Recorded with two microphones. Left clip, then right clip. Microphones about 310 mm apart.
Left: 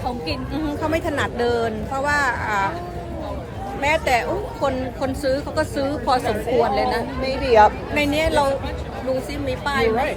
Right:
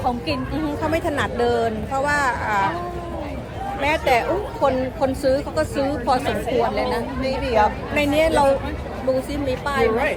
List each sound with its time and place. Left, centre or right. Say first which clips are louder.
0.5 s a woman's voice: left 1 dB; centre
3.8 s a woman's voice: even; centre
7.3 s speech: left 5 dB; left
7.9 s a woman's voice: right 1 dB; centre
9.5 s a woman's voice: even; centre